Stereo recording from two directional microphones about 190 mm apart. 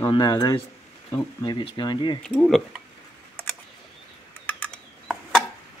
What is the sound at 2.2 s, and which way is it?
Speech, 5° left (ahead or behind).